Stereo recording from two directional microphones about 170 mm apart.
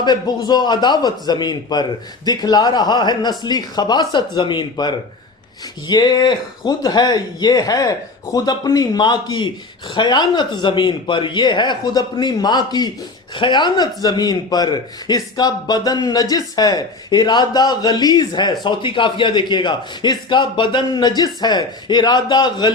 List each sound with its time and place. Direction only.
0.0 s speech: 25° left (ahead or behind)